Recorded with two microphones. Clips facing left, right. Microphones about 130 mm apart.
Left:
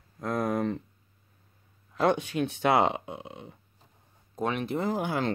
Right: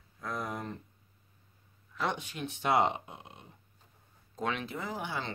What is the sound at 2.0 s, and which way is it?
Speech, 65° left (ahead or behind).